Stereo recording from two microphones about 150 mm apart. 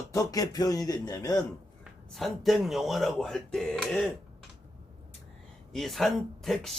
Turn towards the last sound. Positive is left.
turn(degrees=0)  # may be behind; listen again after turning